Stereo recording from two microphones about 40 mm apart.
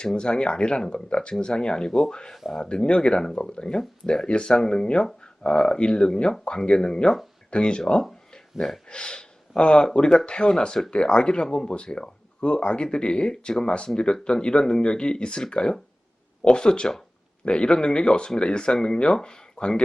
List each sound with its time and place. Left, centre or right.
0.0 s speech: left
8.5 s speech: centre
8.9 s speech: left